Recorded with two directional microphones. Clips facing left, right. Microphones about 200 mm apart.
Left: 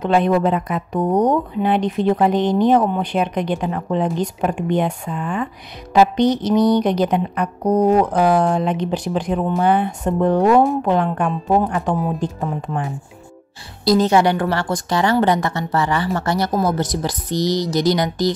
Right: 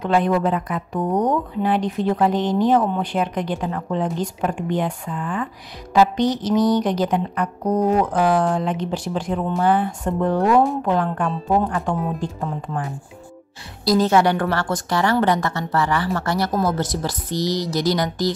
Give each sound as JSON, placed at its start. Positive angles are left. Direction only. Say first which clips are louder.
{"t": 0.0, "sound": "a woman's voice", "louder": "left 3 dB", "side_deg": 25}
{"t": 7.6, "sound": "speech", "louder": "left 4 dB", "side_deg": 35}
{"t": 8.0, "sound": "a woman's voice", "louder": "left 3 dB", "side_deg": 20}
{"t": 14.0, "sound": "a woman's voice", "louder": "left 1 dB", "side_deg": 15}